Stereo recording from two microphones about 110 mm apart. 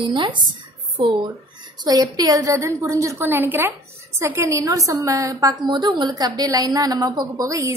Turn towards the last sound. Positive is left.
turn(degrees=-30)  # may be behind; listen again after turning